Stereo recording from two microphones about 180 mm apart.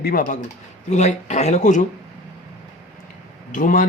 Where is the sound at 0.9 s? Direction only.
40° left (ahead or behind).